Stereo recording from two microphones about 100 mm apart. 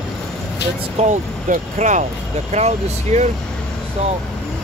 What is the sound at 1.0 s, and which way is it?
Speech, 90° right.